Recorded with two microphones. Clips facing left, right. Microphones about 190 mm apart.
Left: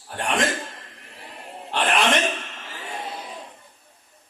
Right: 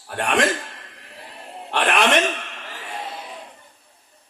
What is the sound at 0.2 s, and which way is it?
Speech, 65° right (ahead or behind).